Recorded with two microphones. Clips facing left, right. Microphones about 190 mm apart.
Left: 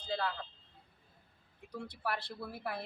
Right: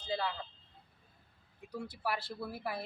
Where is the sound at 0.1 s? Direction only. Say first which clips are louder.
Even; 10° right (ahead or behind).